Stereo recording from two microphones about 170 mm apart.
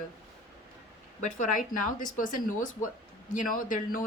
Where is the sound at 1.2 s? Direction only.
50° left (ahead or behind).